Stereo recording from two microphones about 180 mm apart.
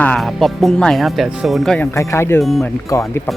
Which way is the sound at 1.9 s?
15° left (ahead or behind).